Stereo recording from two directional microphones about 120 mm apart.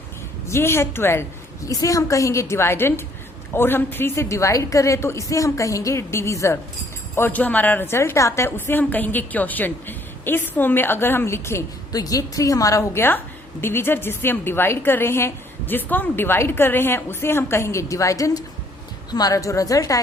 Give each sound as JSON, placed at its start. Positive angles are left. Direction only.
{"t": 0.4, "sound": "a woman's voice", "side_deg": 20}